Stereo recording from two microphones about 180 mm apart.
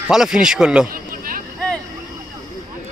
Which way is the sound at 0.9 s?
50° right (ahead or behind).